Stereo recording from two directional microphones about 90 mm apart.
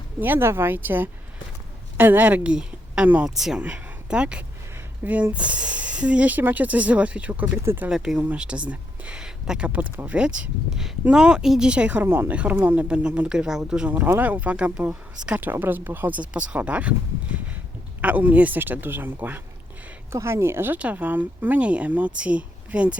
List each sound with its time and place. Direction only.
0.2 s speech: 25° right (ahead or behind)
7.6 s speech: 25° right (ahead or behind)
7.9 s speech: 5° right (ahead or behind)
12.0 s speech: 30° right (ahead or behind)
12.3 s speech: 15° right (ahead or behind)